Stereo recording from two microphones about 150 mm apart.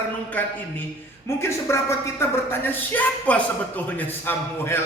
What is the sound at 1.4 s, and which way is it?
A man's voice, 20° left (ahead or behind).